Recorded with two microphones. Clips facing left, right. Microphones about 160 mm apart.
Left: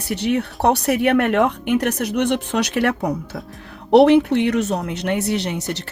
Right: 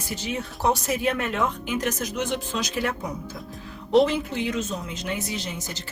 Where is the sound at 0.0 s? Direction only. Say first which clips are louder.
Left 10 dB; 65° left (ahead or behind).